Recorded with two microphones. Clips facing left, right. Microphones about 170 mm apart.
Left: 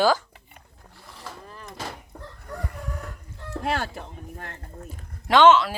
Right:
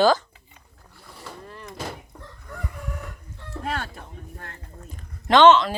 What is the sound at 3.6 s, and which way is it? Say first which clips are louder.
Speech: left 3 dB; 80° left.